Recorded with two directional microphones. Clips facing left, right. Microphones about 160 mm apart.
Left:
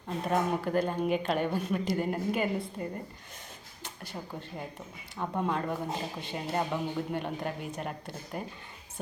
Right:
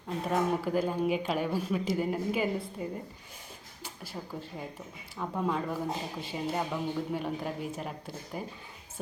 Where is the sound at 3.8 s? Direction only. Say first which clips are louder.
Even; 5° right (ahead or behind).